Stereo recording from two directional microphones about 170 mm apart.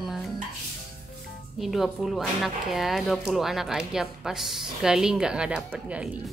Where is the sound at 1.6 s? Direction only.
Centre (ahead or behind).